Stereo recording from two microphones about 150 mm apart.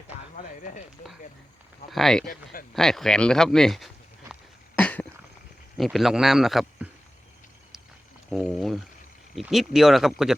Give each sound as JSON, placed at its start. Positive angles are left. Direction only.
{"t": 0.3, "sound": "a sound", "side_deg": 55}
{"t": 1.9, "sound": "a man's voice", "side_deg": 0}
{"t": 2.2, "sound": "speech", "side_deg": 70}
{"t": 2.7, "sound": "speech", "side_deg": 0}
{"t": 4.8, "sound": "cough", "side_deg": 10}
{"t": 5.7, "sound": "a man's voice", "side_deg": 0}
{"t": 8.3, "sound": "a man's voice", "side_deg": 0}